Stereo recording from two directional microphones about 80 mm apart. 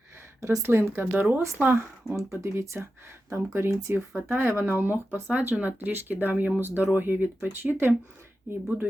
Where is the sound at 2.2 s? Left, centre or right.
Right.